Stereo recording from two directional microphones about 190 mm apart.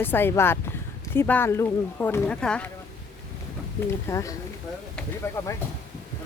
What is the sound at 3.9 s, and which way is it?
Speech, 15° left (ahead or behind).